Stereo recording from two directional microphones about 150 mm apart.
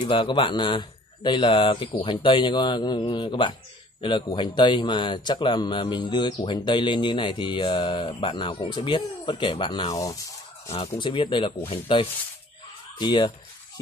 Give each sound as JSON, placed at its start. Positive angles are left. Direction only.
{"t": 0.0, "sound": "speech", "side_deg": 35}
{"t": 10.7, "sound": "speech", "side_deg": 35}